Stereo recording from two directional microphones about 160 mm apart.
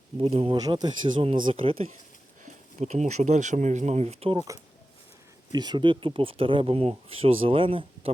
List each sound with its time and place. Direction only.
0.2 s speech: 35° right (ahead or behind)
0.5 s speech: 25° right (ahead or behind)
2.4 s speech: 45° right (ahead or behind)
4.4 s speech: 20° right (ahead or behind)